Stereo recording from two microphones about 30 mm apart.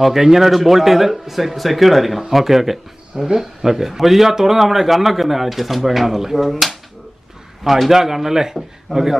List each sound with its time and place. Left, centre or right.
0.0 s speech: centre